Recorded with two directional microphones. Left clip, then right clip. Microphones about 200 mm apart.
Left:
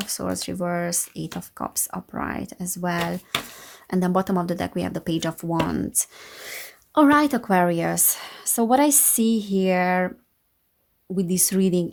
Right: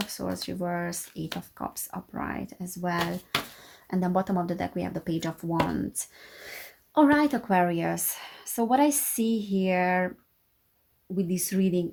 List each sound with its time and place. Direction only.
0.1 s speech: 45° left (ahead or behind)
11.1 s speech: 45° left (ahead or behind)